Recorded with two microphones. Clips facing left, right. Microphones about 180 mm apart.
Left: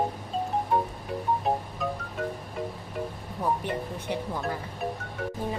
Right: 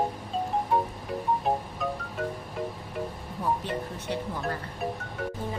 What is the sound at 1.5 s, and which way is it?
Music, centre (ahead or behind).